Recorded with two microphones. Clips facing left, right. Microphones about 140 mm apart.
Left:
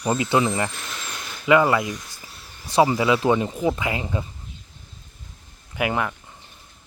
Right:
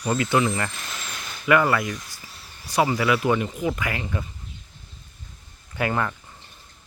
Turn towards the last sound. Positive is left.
turn(degrees=10)  # may be behind; listen again after turning